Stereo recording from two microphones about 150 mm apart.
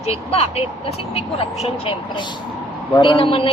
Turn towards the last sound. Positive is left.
turn(degrees=35)  # may be behind; listen again after turning